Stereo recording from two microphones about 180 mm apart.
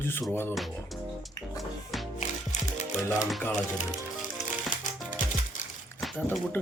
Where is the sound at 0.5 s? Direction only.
Centre (ahead or behind).